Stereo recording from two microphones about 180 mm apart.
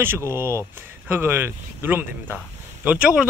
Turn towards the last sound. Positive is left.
turn(degrees=-5)  # may be behind; listen again after turning